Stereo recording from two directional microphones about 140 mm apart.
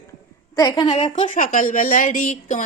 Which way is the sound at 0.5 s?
30° left (ahead or behind).